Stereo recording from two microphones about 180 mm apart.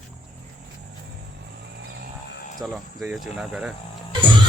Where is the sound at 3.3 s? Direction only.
5° right (ahead or behind).